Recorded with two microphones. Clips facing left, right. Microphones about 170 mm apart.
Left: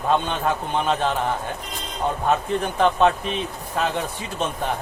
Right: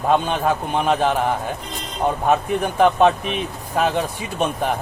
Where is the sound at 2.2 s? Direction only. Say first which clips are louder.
Right 2 dB; 15° right (ahead or behind).